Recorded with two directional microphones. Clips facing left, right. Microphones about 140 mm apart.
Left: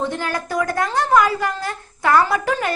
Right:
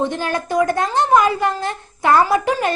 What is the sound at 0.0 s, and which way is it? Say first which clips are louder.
A woman's voice: right 3 dB; 20° right (ahead or behind).